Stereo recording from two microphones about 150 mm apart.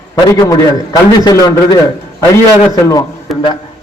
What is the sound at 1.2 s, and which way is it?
Speech, 25° left (ahead or behind).